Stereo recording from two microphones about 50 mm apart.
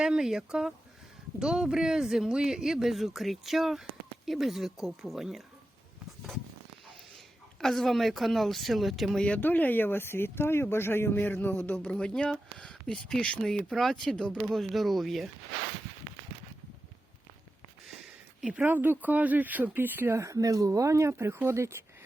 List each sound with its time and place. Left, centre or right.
0.0 s speech: centre
7.6 s speech: centre
9.4 s speech: left
11.9 s speech: centre
14.4 s speech: centre
18.6 s speech: right
20.1 s speech: right